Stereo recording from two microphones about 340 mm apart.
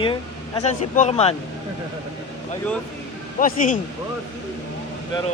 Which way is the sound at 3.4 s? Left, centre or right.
Left.